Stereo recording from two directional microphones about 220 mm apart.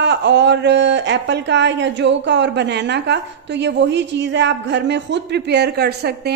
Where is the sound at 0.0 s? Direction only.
50° right (ahead or behind).